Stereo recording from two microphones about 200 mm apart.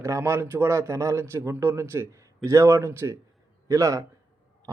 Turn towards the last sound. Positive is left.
turn(degrees=-15)  # may be behind; listen again after turning